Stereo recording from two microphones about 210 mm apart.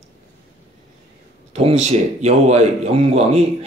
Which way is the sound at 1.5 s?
35° right (ahead or behind).